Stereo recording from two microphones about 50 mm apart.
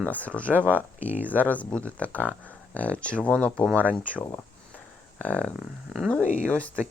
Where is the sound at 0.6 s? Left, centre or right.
Right.